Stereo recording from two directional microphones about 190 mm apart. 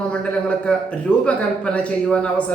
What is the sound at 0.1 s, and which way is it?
A man's voice, 5° left (ahead or behind).